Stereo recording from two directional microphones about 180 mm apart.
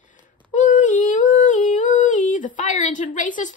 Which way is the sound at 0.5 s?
45° left (ahead or behind).